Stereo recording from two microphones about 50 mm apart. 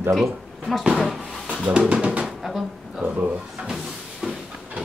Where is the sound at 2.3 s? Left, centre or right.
Centre.